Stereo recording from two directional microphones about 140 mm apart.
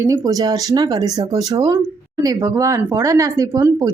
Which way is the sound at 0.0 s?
25° right (ahead or behind).